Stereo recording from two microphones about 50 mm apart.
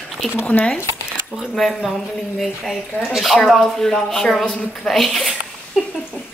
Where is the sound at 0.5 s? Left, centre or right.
Left.